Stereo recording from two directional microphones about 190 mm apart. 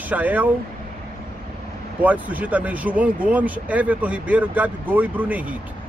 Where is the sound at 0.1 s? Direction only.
10° right (ahead or behind).